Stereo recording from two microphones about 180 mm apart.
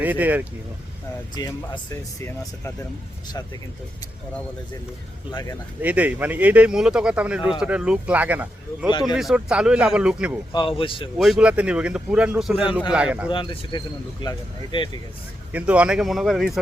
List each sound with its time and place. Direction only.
0.0 s speech: 10° right (ahead or behind)
1.4 s speech: 25° left (ahead or behind)
5.3 s speech: 20° left (ahead or behind)
5.8 s speech: 10° right (ahead or behind)
8.9 s speech: 25° left (ahead or behind)
9.1 s speech: 5° right (ahead or behind)
10.5 s speech: 30° left (ahead or behind)
11.2 s speech: 5° right (ahead or behind)
13.3 s speech: 30° left (ahead or behind)
15.5 s speech: 5° right (ahead or behind)